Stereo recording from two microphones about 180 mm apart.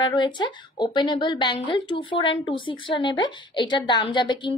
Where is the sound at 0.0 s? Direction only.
25° left (ahead or behind).